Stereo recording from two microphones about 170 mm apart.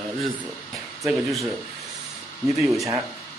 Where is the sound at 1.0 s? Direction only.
Centre (ahead or behind).